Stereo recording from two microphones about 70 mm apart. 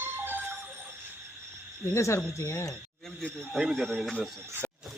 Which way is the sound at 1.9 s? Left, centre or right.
Left.